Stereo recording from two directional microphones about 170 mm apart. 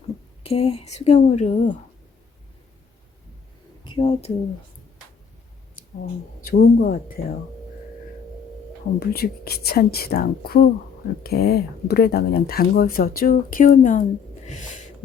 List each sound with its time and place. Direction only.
0.4 s speech: 35° left (ahead or behind)
3.8 s speech: 30° left (ahead or behind)
6.4 s speech: 60° left (ahead or behind)
9.0 s speech: 65° left (ahead or behind); by 14.8 s 45° left (ahead or behind)